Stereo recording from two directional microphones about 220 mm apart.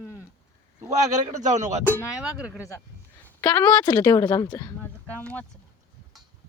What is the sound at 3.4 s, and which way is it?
Speech, 15° left (ahead or behind).